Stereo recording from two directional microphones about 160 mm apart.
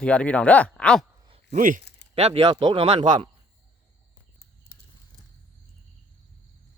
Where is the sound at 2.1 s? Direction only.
40° right (ahead or behind).